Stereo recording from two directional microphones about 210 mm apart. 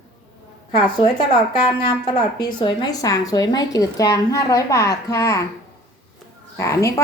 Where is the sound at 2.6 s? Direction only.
20° left (ahead or behind).